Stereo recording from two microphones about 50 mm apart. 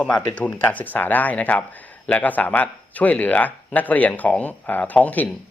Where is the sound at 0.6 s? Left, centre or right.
Left.